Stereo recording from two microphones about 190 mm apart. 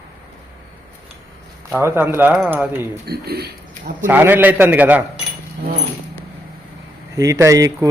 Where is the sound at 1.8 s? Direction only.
10° right (ahead or behind).